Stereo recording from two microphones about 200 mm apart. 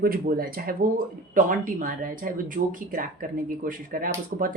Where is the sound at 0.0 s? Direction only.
45° right (ahead or behind).